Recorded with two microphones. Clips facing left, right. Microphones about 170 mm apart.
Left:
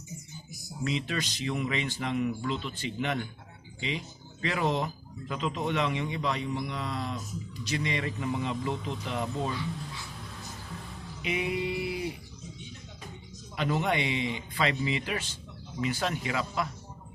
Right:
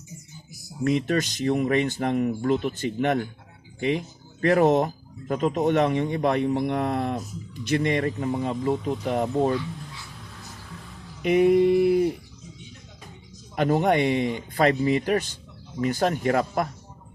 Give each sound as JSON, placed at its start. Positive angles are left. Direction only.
{"t": 0.9, "sound": "speech", "side_deg": -50}
{"t": 11.2, "sound": "speech", "side_deg": -50}
{"t": 13.6, "sound": "speech", "side_deg": -50}